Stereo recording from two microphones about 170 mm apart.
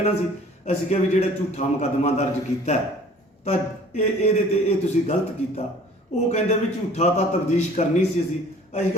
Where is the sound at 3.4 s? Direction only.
45° left (ahead or behind).